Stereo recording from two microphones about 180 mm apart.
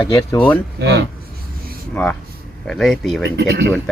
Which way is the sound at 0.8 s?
75° right (ahead or behind).